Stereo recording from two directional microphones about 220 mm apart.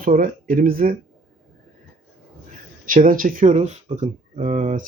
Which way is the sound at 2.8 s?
40° right (ahead or behind).